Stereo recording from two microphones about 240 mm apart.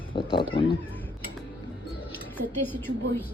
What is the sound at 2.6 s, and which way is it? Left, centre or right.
Speech, centre.